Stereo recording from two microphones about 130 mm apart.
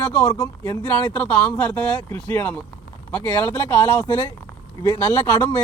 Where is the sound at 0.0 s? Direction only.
15° left (ahead or behind).